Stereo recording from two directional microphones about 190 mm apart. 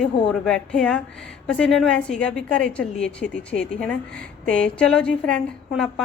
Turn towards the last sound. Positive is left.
turn(degrees=5)  # may be behind; listen again after turning